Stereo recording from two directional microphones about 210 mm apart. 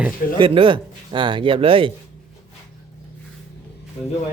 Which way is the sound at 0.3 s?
25° right (ahead or behind).